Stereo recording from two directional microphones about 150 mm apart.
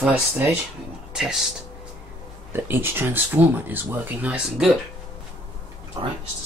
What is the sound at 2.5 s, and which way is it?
Speech, 15° right (ahead or behind).